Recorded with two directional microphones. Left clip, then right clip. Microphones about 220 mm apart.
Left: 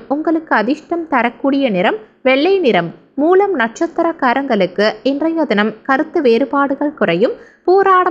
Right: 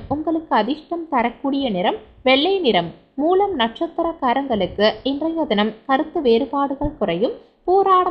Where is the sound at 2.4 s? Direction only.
45° left (ahead or behind).